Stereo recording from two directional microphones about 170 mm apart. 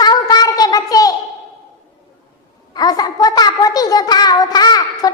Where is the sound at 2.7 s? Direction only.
25° left (ahead or behind).